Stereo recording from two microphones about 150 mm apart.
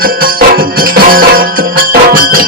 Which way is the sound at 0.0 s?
75° right (ahead or behind).